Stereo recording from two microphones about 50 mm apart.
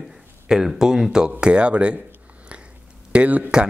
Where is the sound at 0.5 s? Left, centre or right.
Centre.